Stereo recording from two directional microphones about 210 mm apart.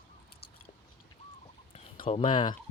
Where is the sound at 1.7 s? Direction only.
30° left (ahead or behind).